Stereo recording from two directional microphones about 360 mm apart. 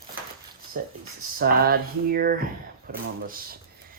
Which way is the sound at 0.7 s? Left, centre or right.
Right.